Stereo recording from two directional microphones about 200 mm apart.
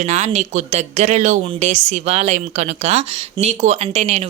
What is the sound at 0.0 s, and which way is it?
Speech, 35° right (ahead or behind).